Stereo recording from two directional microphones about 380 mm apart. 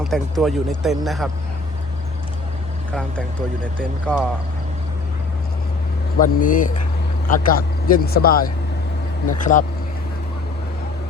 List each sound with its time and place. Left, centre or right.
0.0 s speech: centre
3.8 s speech: centre
6.1 s speech: left